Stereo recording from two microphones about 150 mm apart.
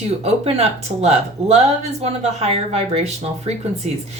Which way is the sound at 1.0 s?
45° right (ahead or behind).